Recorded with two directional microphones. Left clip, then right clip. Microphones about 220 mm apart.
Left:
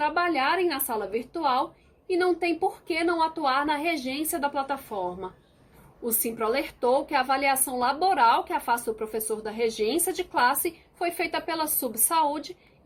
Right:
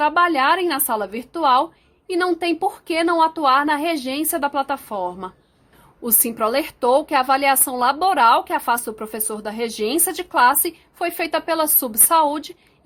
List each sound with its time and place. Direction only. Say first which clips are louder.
0.1 s speech: right 8 dB; 50° right (ahead or behind)
6.2 s speech: right 7 dB; 50° right (ahead or behind)